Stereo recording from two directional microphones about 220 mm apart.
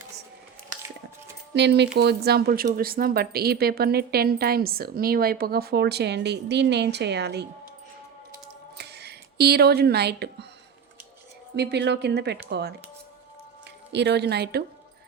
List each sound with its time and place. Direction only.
1.5 s speech: 50° right (ahead or behind)
8.8 s a sound: 50° right (ahead or behind)
11.5 s speech: 50° right (ahead or behind)
13.9 s speech: 50° right (ahead or behind)